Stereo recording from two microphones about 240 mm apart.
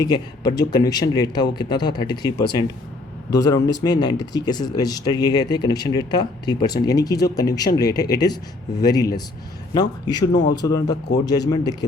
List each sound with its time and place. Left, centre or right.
0.0 s speech: centre